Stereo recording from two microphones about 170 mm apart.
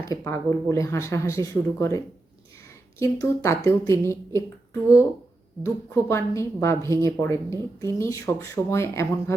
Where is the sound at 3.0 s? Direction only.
15° left (ahead or behind).